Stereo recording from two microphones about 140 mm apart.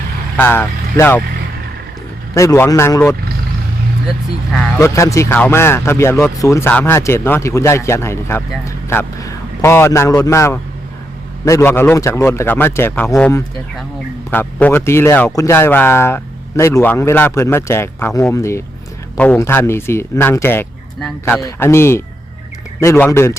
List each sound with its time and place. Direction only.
0.3 s speech: 15° left (ahead or behind)
2.3 s speech: 20° left (ahead or behind)
4.8 s speech: 20° left (ahead or behind)